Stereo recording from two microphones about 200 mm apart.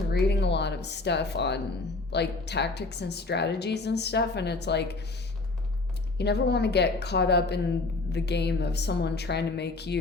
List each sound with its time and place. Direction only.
0.1 s a sound: 55° left (ahead or behind)
2.1 s a woman's voice: 55° left (ahead or behind)
6.1 s a woman's voice: 55° left (ahead or behind)